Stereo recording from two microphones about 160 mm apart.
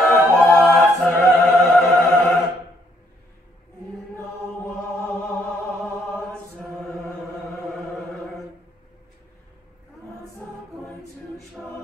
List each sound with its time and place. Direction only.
0.1 s music: 5° left (ahead or behind)
5.0 s music: 5° left (ahead or behind)
11.6 s choir: 5° right (ahead or behind)